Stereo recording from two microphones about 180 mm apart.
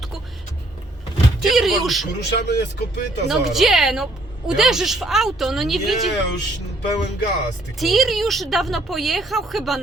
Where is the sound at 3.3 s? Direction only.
Centre (ahead or behind).